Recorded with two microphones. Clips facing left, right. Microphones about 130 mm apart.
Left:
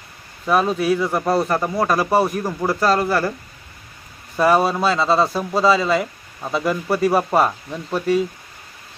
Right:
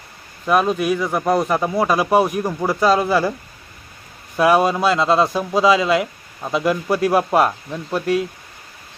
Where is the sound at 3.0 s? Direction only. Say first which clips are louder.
Right 2 dB; 15° right (ahead or behind).